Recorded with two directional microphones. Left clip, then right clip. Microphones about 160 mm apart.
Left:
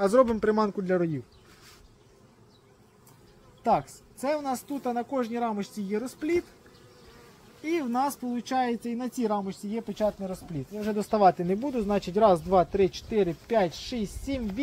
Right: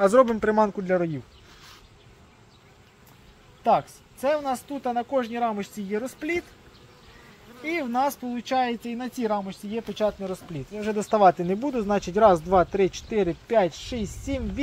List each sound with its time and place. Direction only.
0.0 s speech: 25° right (ahead or behind)
3.6 s speech: centre (ahead or behind)
7.6 s speech: 5° left (ahead or behind)
10.2 s speech: 20° right (ahead or behind)